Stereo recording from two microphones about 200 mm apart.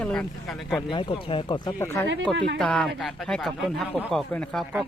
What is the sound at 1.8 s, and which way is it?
Speech, 10° left (ahead or behind).